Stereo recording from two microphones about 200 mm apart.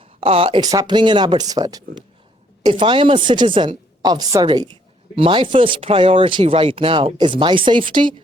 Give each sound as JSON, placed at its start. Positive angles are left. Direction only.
{"t": 0.2, "sound": "a woman's voice", "side_deg": -30}